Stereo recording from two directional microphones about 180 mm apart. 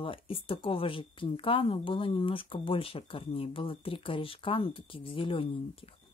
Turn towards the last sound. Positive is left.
turn(degrees=30)  # may be behind; listen again after turning